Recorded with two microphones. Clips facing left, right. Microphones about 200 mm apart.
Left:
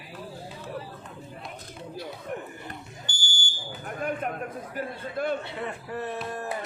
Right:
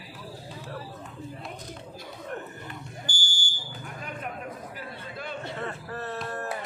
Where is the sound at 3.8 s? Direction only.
50° left (ahead or behind).